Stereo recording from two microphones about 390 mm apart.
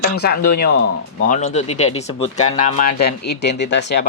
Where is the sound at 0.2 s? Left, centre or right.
Left.